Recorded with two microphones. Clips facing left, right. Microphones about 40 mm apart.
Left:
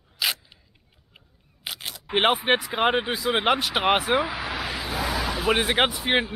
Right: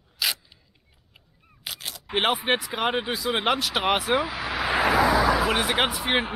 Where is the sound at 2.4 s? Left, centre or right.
Centre.